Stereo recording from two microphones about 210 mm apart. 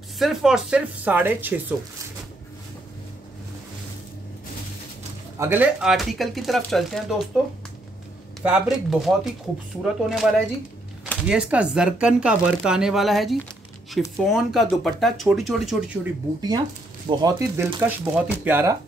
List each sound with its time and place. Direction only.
0.2 s speech: centre (ahead or behind)
5.4 s speech: 10° right (ahead or behind)
8.4 s speech: 5° right (ahead or behind)
16.3 s speech: 20° right (ahead or behind)